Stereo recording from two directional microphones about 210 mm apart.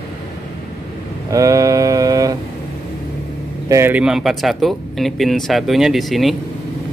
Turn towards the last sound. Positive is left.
turn(degrees=0)  # may be behind; listen again after turning